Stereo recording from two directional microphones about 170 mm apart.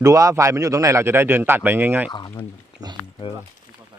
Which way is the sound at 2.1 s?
25° left (ahead or behind).